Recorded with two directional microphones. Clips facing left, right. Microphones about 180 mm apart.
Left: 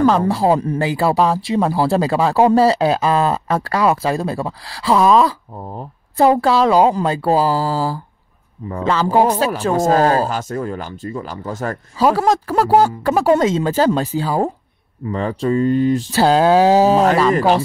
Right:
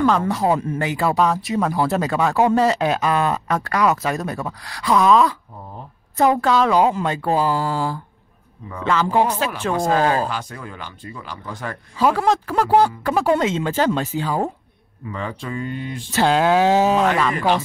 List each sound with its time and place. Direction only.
0.0 s a man's voice: 35° left (ahead or behind)